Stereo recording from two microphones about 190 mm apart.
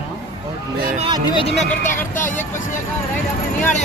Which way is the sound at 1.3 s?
25° left (ahead or behind).